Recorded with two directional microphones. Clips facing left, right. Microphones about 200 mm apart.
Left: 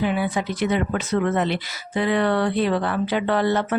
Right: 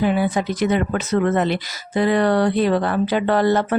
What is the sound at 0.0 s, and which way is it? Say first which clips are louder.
Speech: right 4 dB; 40° right (ahead or behind).